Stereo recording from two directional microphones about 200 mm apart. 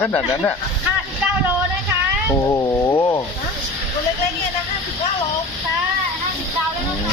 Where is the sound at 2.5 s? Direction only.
15° left (ahead or behind).